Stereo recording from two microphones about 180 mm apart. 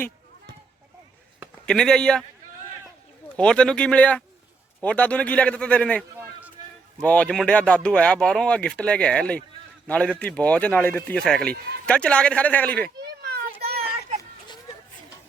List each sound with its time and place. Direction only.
1.6 s speech: 5° left (ahead or behind)
3.3 s speech: 5° left (ahead or behind)
13.0 s children playing: 60° right (ahead or behind)
14.2 s a sound: 25° left (ahead or behind)